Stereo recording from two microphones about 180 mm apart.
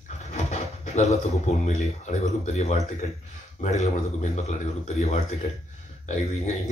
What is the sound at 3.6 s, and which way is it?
A man's voice, 40° left (ahead or behind).